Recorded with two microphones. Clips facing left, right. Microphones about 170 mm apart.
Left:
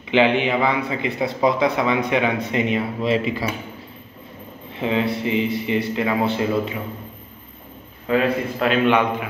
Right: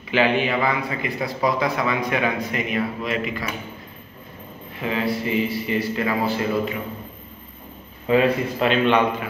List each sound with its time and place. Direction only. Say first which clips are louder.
0.1 s a man's voice: left 2 dB; 20° left (ahead or behind)
4.7 s a man's voice: left 2 dB; 25° left (ahead or behind)
8.1 s a man's voice: right 1 dB; centre (ahead or behind)